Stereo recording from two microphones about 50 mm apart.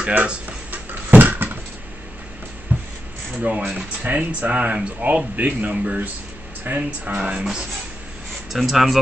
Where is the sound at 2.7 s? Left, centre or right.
Right.